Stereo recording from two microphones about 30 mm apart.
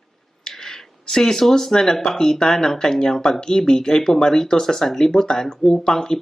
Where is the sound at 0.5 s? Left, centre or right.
Centre.